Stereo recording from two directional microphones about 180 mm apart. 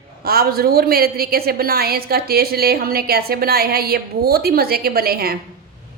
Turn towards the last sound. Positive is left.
turn(degrees=-55)  # may be behind; listen again after turning